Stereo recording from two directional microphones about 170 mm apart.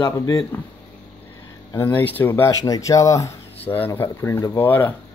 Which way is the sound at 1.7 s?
10° left (ahead or behind).